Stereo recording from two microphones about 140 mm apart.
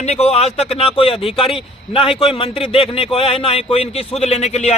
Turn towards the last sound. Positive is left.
turn(degrees=50)  # may be behind; listen again after turning